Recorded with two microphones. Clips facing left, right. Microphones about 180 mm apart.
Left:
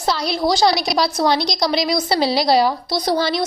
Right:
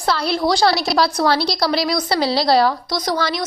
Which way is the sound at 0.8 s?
20° left (ahead or behind).